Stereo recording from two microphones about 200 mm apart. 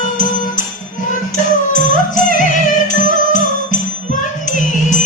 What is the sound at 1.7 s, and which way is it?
Music, 40° left (ahead or behind).